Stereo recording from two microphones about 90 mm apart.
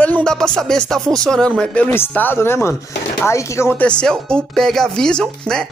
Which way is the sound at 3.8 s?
10° left (ahead or behind).